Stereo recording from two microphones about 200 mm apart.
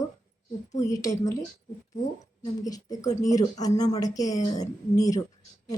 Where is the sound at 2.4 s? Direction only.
20° left (ahead or behind).